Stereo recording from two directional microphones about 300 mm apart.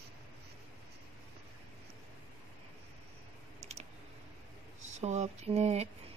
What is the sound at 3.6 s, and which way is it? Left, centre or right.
Clicking, right.